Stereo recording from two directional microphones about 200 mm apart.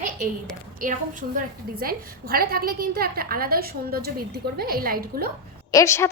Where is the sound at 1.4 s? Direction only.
45° right (ahead or behind).